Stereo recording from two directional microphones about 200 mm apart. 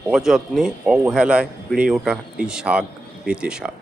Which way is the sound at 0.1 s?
Centre (ahead or behind).